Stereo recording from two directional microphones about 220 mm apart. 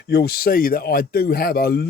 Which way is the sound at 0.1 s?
45° left (ahead or behind).